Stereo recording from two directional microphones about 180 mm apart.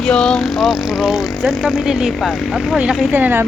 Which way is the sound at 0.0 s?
5° left (ahead or behind).